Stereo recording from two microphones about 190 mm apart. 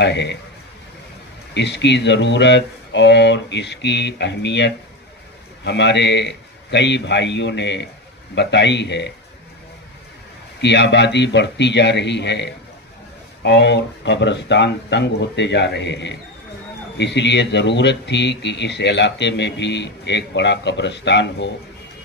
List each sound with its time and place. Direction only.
0.0 s speech: 65° left (ahead or behind)
1.5 s speech: 65° left (ahead or behind)
10.6 s speech: 65° left (ahead or behind)